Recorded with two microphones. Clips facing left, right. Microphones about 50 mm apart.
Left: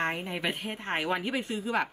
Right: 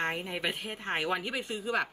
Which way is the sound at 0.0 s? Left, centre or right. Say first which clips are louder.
Left 2 dB; centre.